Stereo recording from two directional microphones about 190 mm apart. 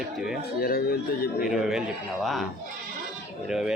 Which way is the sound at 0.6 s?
50° left (ahead or behind).